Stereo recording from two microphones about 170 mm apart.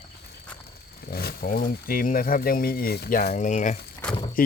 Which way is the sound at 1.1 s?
65° left (ahead or behind).